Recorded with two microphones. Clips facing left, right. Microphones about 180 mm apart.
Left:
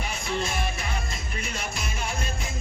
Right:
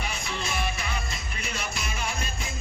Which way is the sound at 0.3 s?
50° left (ahead or behind).